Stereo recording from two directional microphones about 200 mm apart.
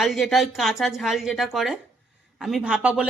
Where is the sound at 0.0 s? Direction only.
Centre (ahead or behind).